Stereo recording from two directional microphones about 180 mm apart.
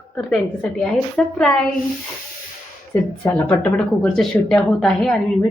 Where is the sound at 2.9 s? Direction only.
10° left (ahead or behind).